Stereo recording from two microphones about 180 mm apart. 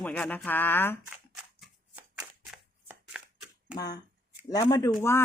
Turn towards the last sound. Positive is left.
turn(degrees=20)  # may be behind; listen again after turning